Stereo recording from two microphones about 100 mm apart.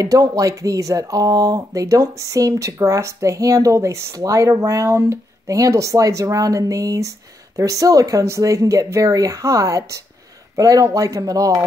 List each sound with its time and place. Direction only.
0.0 s speech: 35° right (ahead or behind)